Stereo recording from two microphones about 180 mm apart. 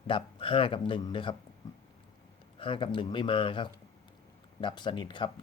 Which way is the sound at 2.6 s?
30° left (ahead or behind).